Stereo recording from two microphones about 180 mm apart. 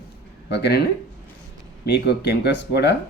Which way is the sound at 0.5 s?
65° left (ahead or behind).